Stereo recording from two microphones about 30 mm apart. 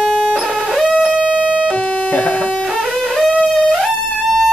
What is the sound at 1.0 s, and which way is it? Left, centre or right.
Music, right.